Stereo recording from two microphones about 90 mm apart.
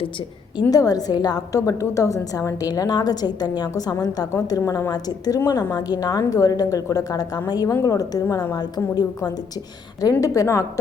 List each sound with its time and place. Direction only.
0.7 s a woman's voice: 45° left (ahead or behind)
1.5 s a woman's voice: 35° left (ahead or behind)
5.4 s a woman's voice: 30° left (ahead or behind)
5.7 s a woman's voice: 45° left (ahead or behind)